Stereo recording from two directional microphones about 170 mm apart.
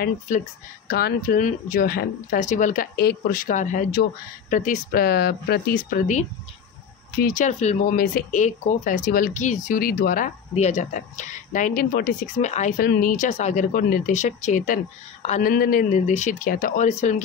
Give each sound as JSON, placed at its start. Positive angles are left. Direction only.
{"t": 0.8, "sound": "speech", "side_deg": 65}
{"t": 3.0, "sound": "speech", "side_deg": 65}
{"t": 7.2, "sound": "speech", "side_deg": 50}
{"t": 12.7, "sound": "speech", "side_deg": 60}
{"t": 13.7, "sound": "speech", "side_deg": 55}
{"t": 15.5, "sound": "speech", "side_deg": 55}